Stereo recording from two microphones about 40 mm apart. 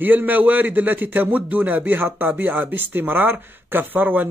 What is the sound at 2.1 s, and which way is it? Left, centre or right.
Speech, right.